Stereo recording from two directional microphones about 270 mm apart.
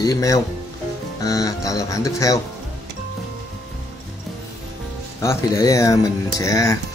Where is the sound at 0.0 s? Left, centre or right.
Centre.